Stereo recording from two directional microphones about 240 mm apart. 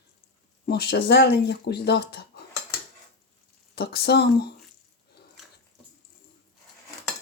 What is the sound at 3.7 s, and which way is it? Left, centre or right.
Speech, left.